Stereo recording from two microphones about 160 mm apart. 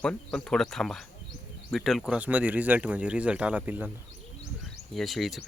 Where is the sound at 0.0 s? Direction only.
5° left (ahead or behind); by 3.9 s 10° right (ahead or behind).